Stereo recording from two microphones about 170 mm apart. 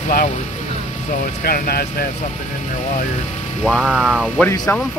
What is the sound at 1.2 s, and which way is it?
Speech, 60° left (ahead or behind).